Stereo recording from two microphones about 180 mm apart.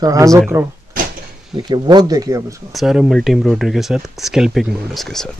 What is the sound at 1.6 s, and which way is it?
Speech, 25° right (ahead or behind).